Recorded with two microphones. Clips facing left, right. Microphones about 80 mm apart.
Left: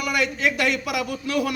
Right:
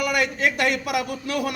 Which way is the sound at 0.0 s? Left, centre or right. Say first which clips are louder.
Right 1 dB; right.